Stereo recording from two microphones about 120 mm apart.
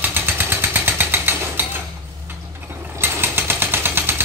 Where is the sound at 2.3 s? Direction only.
15° right (ahead or behind).